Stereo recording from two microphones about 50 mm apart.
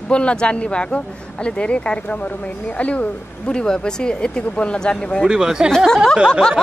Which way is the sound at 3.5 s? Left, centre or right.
Centre.